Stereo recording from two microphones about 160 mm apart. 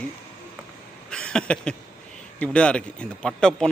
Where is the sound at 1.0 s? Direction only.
5° left (ahead or behind).